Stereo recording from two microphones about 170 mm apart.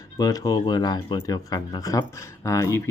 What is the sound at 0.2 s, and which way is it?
Speech, 20° left (ahead or behind).